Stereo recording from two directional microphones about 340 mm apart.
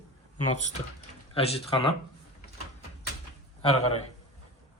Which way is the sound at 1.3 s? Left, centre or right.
Centre.